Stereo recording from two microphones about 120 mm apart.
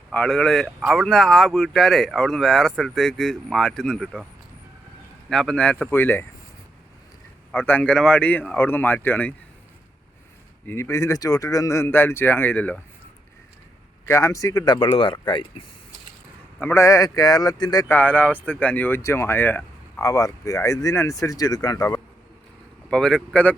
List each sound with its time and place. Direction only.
0.1 s speech: 5° left (ahead or behind)
5.3 s speech: 5° left (ahead or behind)
7.5 s speech: 15° left (ahead or behind)
10.7 s speech: 25° left (ahead or behind)
14.1 s speech: 25° left (ahead or behind)
16.6 s speech: 20° left (ahead or behind)
17.8 s speech: 15° left (ahead or behind)
22.9 s speech: 5° left (ahead or behind)